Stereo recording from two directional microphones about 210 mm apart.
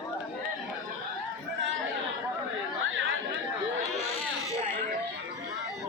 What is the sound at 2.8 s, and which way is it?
Chatter, 65° right (ahead or behind).